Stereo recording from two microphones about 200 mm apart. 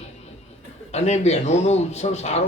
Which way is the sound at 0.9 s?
35° left (ahead or behind).